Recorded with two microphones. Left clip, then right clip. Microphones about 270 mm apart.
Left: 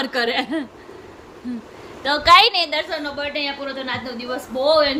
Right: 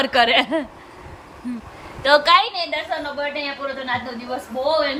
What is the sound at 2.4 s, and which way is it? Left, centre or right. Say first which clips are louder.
Speech: left 7 dB; left.